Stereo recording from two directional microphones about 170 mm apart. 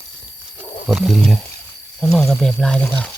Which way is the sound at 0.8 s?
5° right (ahead or behind).